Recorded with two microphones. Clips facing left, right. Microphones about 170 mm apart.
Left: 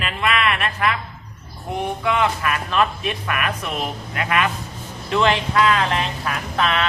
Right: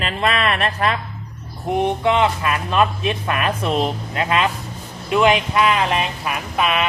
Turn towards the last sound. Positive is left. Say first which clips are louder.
# right 1 dB
turn(degrees=-15)  # may be behind; listen again after turning